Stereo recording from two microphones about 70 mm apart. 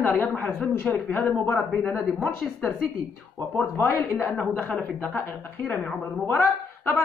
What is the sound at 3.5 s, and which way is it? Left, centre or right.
Speech, left.